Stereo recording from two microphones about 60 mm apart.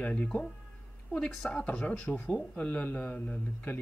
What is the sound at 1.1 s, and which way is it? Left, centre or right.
Speech, centre.